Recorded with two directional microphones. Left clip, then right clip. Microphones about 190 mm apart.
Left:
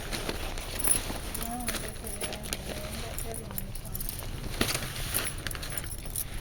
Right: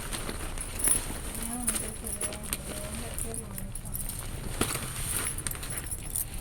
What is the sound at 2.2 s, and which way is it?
Keys jangling, 30° left (ahead or behind).